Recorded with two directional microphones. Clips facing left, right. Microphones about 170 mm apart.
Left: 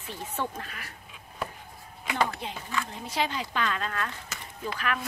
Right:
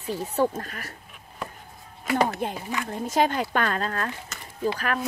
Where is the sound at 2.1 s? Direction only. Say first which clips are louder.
Right 5 dB; 45° right (ahead or behind).